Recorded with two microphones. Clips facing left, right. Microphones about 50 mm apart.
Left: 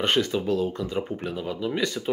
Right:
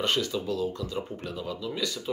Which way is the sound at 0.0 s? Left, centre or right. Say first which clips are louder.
Left 4 dB; left.